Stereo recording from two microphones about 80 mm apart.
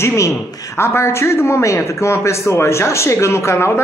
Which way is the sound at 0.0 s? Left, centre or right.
Left.